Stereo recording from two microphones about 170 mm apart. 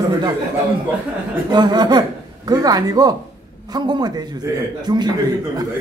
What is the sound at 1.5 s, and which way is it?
A man's voice, 25° right (ahead or behind).